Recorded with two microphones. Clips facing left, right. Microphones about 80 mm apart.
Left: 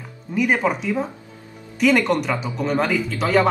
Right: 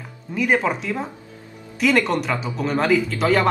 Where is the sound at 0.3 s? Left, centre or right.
Centre.